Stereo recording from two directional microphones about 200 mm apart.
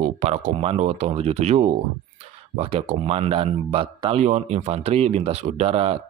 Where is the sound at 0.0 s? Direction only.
35° right (ahead or behind).